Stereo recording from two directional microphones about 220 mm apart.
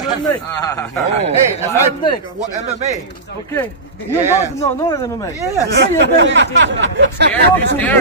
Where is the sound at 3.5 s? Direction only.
10° left (ahead or behind).